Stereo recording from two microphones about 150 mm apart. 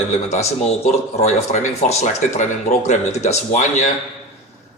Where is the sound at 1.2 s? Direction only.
50° left (ahead or behind).